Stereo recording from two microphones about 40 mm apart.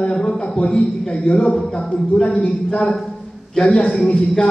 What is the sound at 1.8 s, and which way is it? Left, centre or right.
Speech, centre.